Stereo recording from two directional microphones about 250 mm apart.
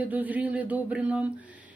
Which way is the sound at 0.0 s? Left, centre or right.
Centre.